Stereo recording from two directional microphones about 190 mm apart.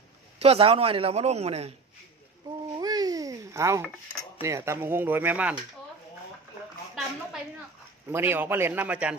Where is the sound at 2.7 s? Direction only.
20° right (ahead or behind).